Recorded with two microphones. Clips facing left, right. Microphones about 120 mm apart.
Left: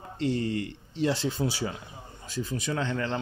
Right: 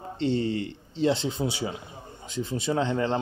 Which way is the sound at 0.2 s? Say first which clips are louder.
Right 2 dB; 30° right (ahead or behind).